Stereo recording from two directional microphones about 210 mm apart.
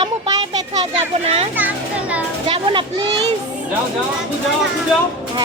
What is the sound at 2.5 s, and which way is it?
Speech, 25° right (ahead or behind).